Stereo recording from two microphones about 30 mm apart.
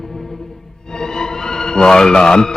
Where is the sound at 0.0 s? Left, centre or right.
Centre.